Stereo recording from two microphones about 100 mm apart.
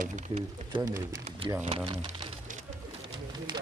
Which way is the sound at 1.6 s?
85° right.